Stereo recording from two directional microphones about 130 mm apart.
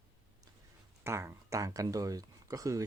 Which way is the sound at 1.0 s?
20° right (ahead or behind).